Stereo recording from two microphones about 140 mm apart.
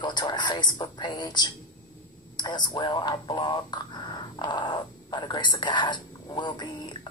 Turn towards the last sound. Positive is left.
turn(degrees=30)  # may be behind; listen again after turning